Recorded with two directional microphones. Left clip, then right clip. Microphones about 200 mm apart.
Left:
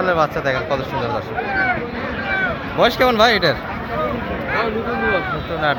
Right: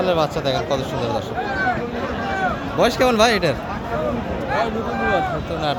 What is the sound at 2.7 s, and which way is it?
Speech, 15° right (ahead or behind).